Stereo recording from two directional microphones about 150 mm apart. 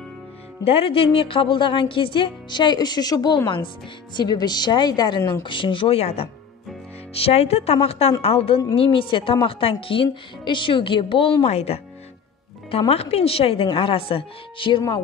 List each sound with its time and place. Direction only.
0.7 s a woman's voice: 40° left (ahead or behind)